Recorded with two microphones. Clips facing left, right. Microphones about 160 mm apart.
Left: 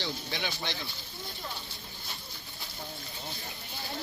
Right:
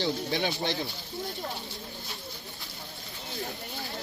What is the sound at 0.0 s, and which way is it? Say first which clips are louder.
Speech: right 7 dB; 45° right (ahead or behind).